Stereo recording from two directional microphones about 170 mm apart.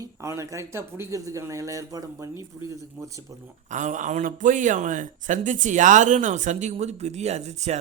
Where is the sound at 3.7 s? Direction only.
45° right (ahead or behind).